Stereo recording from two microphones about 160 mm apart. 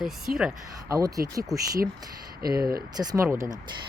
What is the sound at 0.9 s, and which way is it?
Speech, 20° right (ahead or behind).